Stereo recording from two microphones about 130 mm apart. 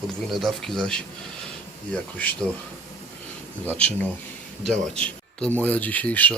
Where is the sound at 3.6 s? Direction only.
10° left (ahead or behind).